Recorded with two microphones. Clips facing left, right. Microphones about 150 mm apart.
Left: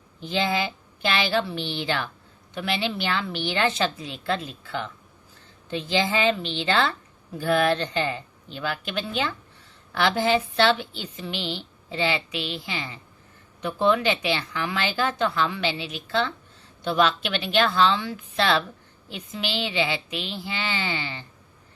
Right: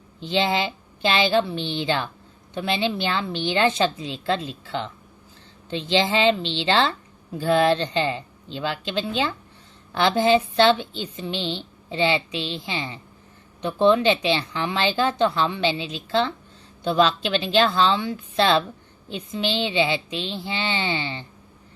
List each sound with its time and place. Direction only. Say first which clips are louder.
0.2 s a woman's voice: right 3 dB; 25° right (ahead or behind)